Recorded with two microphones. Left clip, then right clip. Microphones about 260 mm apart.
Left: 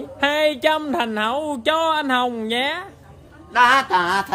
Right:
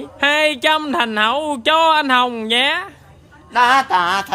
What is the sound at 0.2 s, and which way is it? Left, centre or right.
Speech, centre.